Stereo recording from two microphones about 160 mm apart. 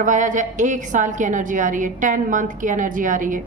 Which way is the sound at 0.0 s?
50° right (ahead or behind).